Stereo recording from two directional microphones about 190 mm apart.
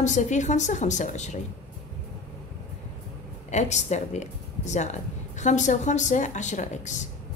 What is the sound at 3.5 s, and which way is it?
A woman's voice, 35° left (ahead or behind).